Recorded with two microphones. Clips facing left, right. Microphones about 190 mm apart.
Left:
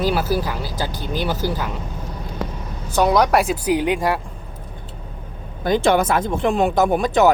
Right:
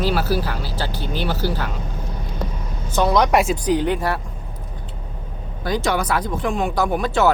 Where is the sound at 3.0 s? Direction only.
10° left (ahead or behind).